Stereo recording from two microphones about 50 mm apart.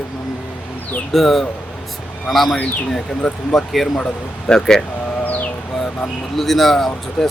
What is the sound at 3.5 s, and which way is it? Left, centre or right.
Speech, centre.